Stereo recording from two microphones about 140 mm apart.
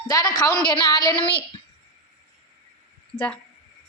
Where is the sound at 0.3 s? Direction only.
25° left (ahead or behind).